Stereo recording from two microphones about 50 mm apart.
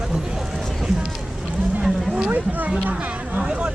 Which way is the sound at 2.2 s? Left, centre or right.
Right.